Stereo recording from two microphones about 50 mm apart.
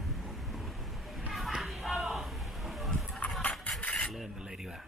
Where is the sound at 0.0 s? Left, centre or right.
Centre.